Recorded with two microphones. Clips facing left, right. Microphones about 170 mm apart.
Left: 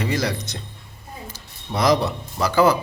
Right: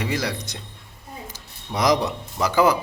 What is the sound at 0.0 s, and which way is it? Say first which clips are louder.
A man's voice: left 2 dB; 10° right (ahead or behind).